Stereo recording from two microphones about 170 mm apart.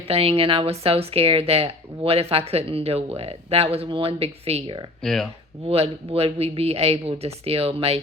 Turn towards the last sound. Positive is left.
turn(degrees=-35)  # may be behind; listen again after turning